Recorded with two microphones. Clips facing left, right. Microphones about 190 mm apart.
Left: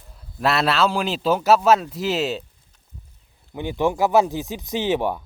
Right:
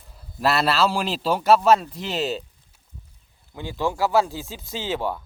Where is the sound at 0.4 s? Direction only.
Centre (ahead or behind).